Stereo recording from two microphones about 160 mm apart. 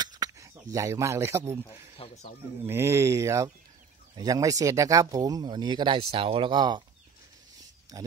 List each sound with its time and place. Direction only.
0.0 s speech: 25° right (ahead or behind)
2.0 s speech: 35° left (ahead or behind)
2.6 s speech: 15° right (ahead or behind)
7.9 s speech: 25° right (ahead or behind)